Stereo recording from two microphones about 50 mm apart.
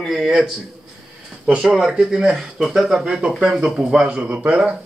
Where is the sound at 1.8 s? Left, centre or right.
Centre.